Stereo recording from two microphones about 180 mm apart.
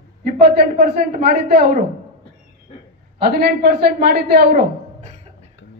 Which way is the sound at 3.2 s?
60° right (ahead or behind).